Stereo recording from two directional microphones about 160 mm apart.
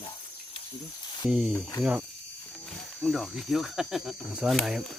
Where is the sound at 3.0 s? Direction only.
Centre (ahead or behind).